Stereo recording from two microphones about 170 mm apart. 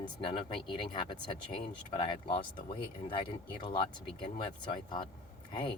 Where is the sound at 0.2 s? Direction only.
30° left (ahead or behind).